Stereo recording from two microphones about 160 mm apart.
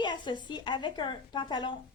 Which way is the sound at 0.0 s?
30° left (ahead or behind).